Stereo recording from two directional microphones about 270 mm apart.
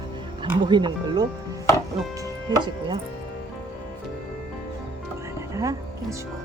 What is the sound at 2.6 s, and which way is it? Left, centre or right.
Speech, centre.